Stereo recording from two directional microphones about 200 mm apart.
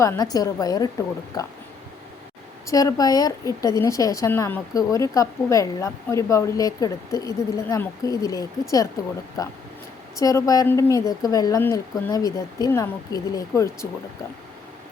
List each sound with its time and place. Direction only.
0.3 s a woman's voice: 20° left (ahead or behind)
2.6 s a woman's voice: 15° left (ahead or behind)